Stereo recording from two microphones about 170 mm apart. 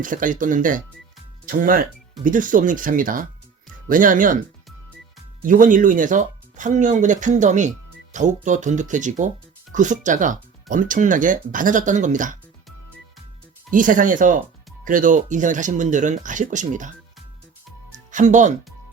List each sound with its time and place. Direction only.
0.0 s speech: 50° right (ahead or behind)
5.4 s speech: 50° right (ahead or behind)
13.7 s speech: 50° right (ahead or behind)
18.1 s speech: 45° right (ahead or behind)